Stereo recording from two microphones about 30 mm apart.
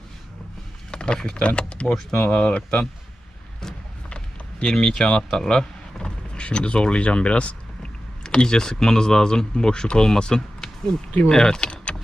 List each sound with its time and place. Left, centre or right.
0.9 s a sound: left
1.5 s speech: left
1.9 s speech: centre
2.3 s speech: left
4.6 s speech: left
6.0 s vehicle: left
8.2 s speech: left
11.9 s a sound: left